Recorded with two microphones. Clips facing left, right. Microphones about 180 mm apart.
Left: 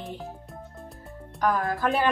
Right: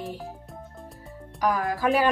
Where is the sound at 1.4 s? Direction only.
10° right (ahead or behind).